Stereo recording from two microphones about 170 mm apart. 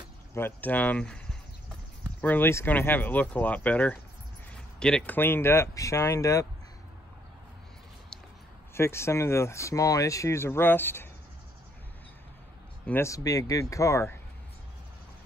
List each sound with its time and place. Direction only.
0.3 s speech: 15° left (ahead or behind)
2.2 s speech: 10° left (ahead or behind)
8.7 s speech: 15° left (ahead or behind)
12.8 s speech: 15° left (ahead or behind)